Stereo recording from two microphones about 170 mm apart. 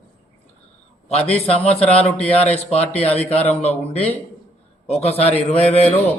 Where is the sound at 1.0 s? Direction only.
35° left (ahead or behind).